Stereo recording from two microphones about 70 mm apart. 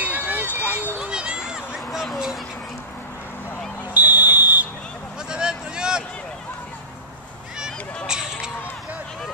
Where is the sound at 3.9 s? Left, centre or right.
Right.